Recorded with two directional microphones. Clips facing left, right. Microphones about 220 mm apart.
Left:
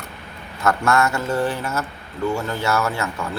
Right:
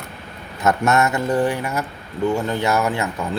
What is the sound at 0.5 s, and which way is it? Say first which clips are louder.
A man's voice: right 1 dB; 20° right (ahead or behind).